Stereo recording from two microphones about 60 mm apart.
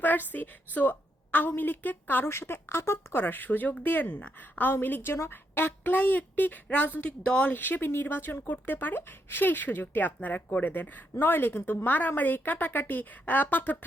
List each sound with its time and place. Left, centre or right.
0.0 s speech: left
3.2 s a woman's voice: left
7.5 s speech: left